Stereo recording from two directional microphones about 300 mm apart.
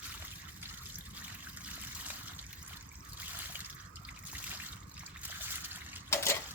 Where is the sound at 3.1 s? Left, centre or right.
Centre.